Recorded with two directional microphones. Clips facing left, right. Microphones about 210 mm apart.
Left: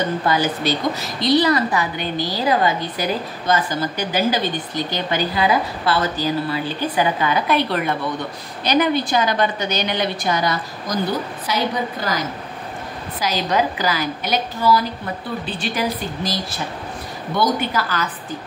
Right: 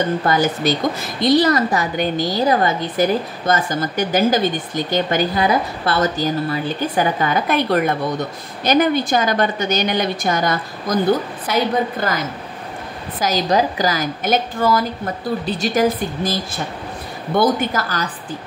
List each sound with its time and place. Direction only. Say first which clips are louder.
0.3 s a woman's voice: right 2 dB; 45° right (ahead or behind)
13.2 s a woman's voice: right 3 dB; 40° right (ahead or behind)
17.4 s a woman's voice: right 3 dB; 45° right (ahead or behind)